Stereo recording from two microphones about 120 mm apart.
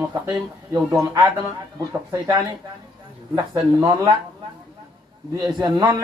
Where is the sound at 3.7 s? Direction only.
25° right (ahead or behind).